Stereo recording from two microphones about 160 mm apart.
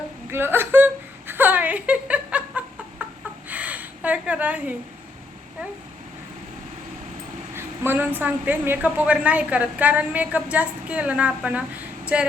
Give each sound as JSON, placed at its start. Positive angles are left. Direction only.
{"t": 0.3, "sound": "a woman's voice", "side_deg": -15}
{"t": 1.3, "sound": "laughter", "side_deg": -10}
{"t": 3.5, "sound": "a sound", "side_deg": -10}
{"t": 7.5, "sound": "a woman's voice", "side_deg": -15}